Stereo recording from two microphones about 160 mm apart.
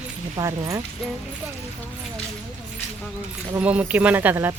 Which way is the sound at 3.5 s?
10° right (ahead or behind).